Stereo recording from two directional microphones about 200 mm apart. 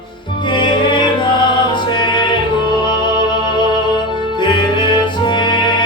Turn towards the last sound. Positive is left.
turn(degrees=25)  # may be behind; listen again after turning